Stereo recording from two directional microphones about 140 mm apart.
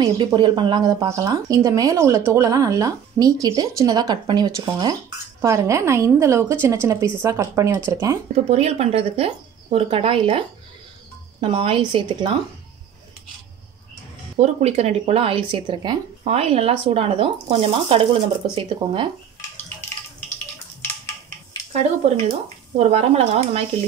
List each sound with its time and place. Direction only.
0.0 s speech: 35° right (ahead or behind)
8.5 s speech: 50° right (ahead or behind)
11.4 s speech: 40° right (ahead or behind)
14.4 s speech: 50° right (ahead or behind); by 16.0 s 30° right (ahead or behind)
16.3 s speech: 45° right (ahead or behind)
22.8 s speech: 50° right (ahead or behind)